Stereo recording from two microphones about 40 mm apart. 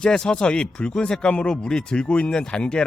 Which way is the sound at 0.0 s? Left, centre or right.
Centre.